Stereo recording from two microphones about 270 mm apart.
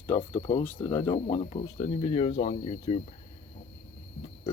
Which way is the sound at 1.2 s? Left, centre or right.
Left.